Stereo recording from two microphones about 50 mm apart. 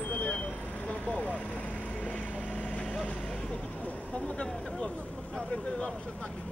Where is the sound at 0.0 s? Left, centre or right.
Left.